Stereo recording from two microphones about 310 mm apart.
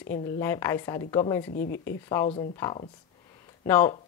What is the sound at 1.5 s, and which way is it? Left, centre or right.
Speech, left.